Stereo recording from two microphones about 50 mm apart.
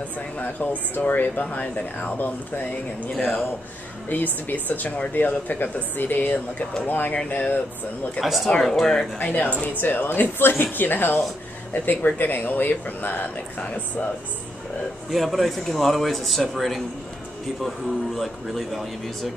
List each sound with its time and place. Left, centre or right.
0.4 s a man's voice: left
3.2 s a man's voice: centre
4.1 s a man's voice: left
8.2 s a man's voice: centre
9.2 s a man's voice: left
15.0 s a man's voice: centre